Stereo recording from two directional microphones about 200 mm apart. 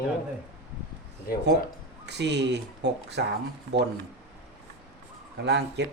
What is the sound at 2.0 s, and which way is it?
Speech, 60° right (ahead or behind).